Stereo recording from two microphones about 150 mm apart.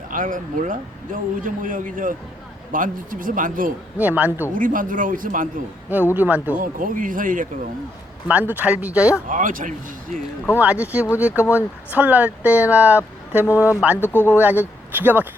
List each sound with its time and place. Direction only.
0.1 s a man's voice: 65° right (ahead or behind)
3.9 s speech: 10° right (ahead or behind)
4.5 s a man's voice: 65° right (ahead or behind)
6.1 s speech: 10° right (ahead or behind)
6.6 s a man's voice: 65° right (ahead or behind)
8.3 s speech: 10° right (ahead or behind)
9.3 s a man's voice: 65° right (ahead or behind)
10.6 s speech: 10° right (ahead or behind)
13.9 s speech: 15° left (ahead or behind)
14.3 s speech: 10° right (ahead or behind)